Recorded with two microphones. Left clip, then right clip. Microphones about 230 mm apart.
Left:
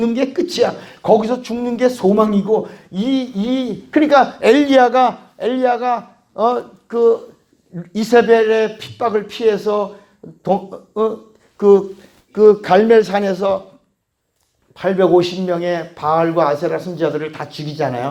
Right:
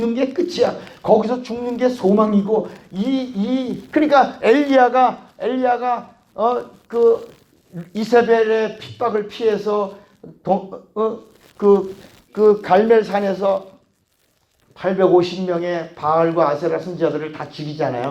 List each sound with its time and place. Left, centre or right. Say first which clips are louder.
0.0 s speech: left 2 dB; left
14.8 s speech: left 2 dB; left